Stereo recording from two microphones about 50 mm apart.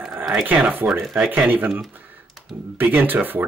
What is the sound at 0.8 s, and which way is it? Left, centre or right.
Speech, right.